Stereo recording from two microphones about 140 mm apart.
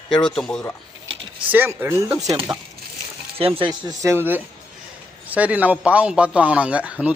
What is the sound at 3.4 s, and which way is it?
Speech, 40° right (ahead or behind).